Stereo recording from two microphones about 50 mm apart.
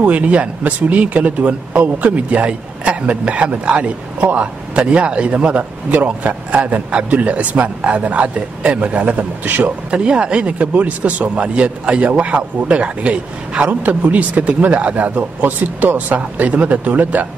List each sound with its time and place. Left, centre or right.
0.0 s speech: right
9.8 s speech: right